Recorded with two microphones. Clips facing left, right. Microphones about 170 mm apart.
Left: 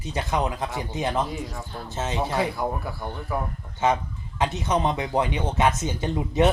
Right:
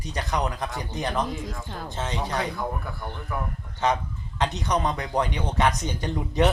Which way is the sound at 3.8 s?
20° left (ahead or behind).